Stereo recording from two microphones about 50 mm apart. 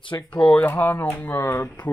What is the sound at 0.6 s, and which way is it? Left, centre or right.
Speech, left.